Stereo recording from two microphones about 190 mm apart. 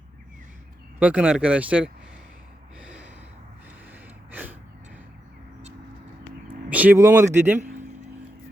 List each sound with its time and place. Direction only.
0.9 s speech: 5° right (ahead or behind)
2.8 s a sound: 5° right (ahead or behind)
4.3 s gasp: 10° right (ahead or behind)
6.7 s speech: 10° right (ahead or behind)